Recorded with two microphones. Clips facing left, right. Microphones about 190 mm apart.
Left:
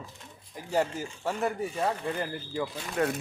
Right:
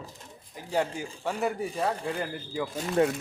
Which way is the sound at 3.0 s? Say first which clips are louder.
Right 4 dB; 30° right (ahead or behind).